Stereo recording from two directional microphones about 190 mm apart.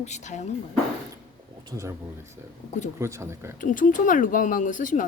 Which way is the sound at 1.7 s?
15° right (ahead or behind).